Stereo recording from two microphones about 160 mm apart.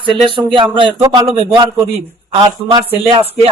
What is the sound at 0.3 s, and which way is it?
A man's voice, 30° right (ahead or behind).